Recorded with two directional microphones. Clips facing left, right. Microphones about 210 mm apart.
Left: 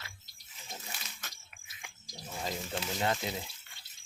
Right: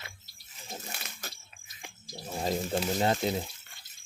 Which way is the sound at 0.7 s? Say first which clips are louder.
Right 4 dB; 50° right (ahead or behind).